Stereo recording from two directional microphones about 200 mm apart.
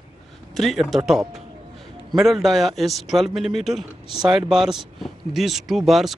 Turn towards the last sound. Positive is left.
turn(degrees=0)  # may be behind; listen again after turning